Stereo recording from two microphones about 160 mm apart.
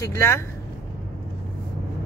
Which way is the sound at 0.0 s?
20° left (ahead or behind).